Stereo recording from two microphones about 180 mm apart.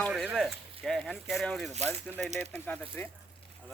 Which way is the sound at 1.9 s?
5° left (ahead or behind).